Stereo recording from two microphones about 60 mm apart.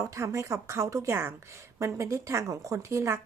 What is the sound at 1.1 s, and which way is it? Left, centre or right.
Speech, right.